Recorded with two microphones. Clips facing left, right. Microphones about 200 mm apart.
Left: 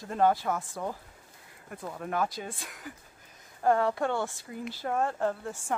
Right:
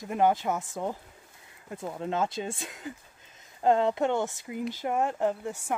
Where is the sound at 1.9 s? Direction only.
25° right (ahead or behind).